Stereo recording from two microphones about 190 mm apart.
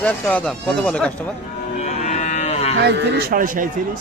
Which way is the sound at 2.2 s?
35° left (ahead or behind).